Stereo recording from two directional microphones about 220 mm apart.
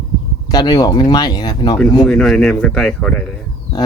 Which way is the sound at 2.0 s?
Centre (ahead or behind).